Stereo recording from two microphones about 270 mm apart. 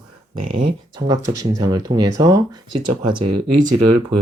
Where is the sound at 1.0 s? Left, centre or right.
Centre.